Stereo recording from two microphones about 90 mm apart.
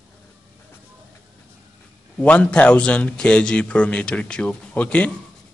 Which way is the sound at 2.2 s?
15° left (ahead or behind).